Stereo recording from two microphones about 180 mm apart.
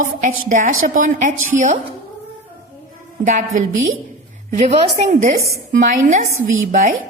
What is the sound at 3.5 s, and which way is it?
A woman's voice, 50° right (ahead or behind).